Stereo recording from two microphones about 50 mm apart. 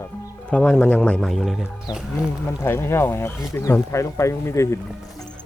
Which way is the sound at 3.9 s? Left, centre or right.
Left.